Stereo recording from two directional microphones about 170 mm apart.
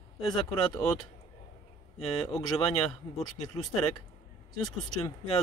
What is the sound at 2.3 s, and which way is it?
Speech, 25° left (ahead or behind).